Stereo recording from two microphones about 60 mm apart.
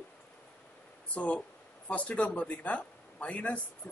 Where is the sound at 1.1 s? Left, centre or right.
Left.